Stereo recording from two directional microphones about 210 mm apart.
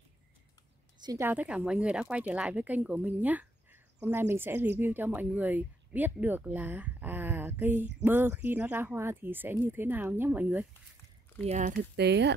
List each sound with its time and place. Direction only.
1.0 s a woman's voice: 10° right (ahead or behind)
11.4 s speech: 35° right (ahead or behind)
12.0 s speech: 55° right (ahead or behind)